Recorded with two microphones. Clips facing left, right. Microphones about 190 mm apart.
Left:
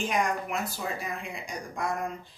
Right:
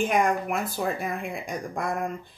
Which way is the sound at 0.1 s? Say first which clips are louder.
Right 5 dB; 55° right (ahead or behind).